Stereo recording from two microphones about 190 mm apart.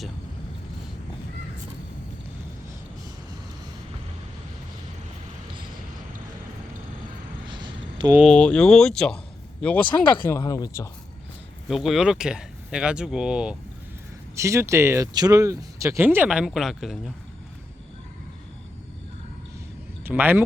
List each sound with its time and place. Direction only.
7.4 s a sound: 25° right (ahead or behind)
8.1 s speech: centre (ahead or behind)
10.2 s speech: 15° left (ahead or behind)
11.7 s speech: centre (ahead or behind)
14.3 s speech: 15° right (ahead or behind)
20.1 s speech: 10° right (ahead or behind)